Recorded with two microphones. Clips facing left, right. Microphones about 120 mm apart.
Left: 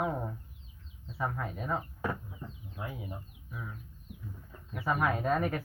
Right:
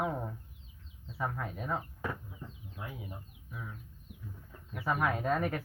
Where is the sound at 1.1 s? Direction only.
20° left (ahead or behind).